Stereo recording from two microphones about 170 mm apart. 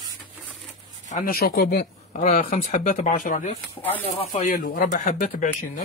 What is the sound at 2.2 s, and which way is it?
Speech, 45° left (ahead or behind).